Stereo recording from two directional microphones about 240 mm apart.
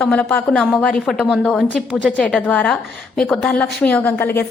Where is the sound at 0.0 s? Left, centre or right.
Centre.